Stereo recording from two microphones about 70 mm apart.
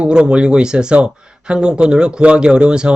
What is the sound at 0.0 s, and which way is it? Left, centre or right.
Speech, centre.